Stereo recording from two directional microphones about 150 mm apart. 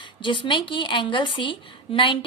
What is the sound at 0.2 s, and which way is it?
A woman's voice, 35° left (ahead or behind).